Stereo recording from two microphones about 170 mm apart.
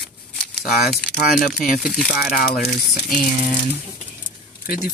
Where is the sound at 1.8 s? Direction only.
Centre (ahead or behind).